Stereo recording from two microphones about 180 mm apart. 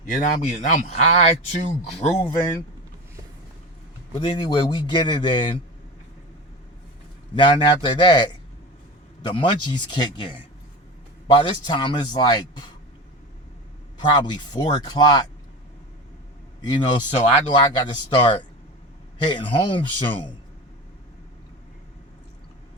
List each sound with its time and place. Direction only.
0.2 s speech: 45° left (ahead or behind)
2.1 s speech: 15° left (ahead or behind)
4.1 s a man's voice: 25° left (ahead or behind)
7.3 s a man's voice: 25° left (ahead or behind)
14.0 s a man's voice: 25° left (ahead or behind)
17.2 s a man's voice: 30° left (ahead or behind)